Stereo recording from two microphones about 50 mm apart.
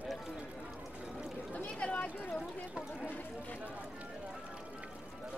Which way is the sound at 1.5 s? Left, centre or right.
Left.